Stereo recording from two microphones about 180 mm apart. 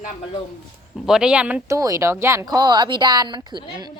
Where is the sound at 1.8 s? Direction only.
20° right (ahead or behind).